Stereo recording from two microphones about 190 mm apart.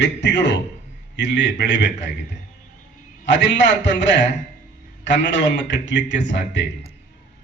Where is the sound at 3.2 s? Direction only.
70° left (ahead or behind).